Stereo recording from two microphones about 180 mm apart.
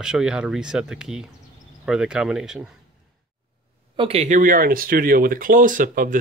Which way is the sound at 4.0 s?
35° right (ahead or behind).